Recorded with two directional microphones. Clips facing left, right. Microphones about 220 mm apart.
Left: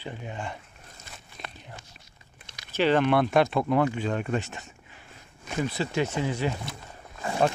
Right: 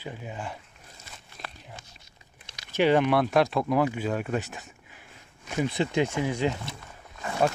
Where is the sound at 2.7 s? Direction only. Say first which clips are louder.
Right 1 dB; 10° right (ahead or behind).